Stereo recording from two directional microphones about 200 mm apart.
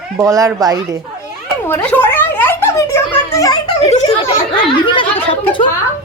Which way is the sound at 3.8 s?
30° left (ahead or behind).